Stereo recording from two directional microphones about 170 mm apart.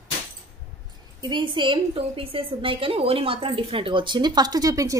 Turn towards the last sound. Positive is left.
turn(degrees=-20)  # may be behind; listen again after turning